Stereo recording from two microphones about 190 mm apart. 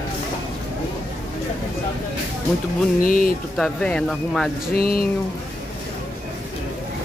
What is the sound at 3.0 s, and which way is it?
Speech, 45° left (ahead or behind).